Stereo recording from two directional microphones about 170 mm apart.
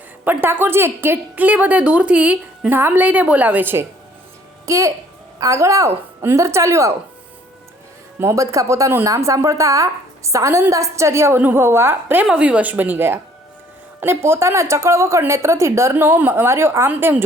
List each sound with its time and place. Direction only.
0.3 s speech: 10° right (ahead or behind)
8.2 s speech: 20° right (ahead or behind)